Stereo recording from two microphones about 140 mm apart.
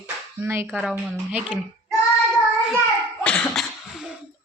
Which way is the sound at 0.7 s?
Centre (ahead or behind).